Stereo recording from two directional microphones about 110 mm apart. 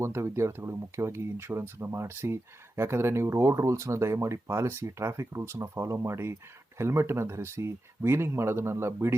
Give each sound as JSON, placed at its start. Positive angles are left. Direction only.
{"t": 0.0, "sound": "speech", "side_deg": -25}